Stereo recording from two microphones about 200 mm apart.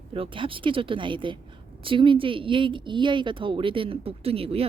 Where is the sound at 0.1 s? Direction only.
25° right (ahead or behind).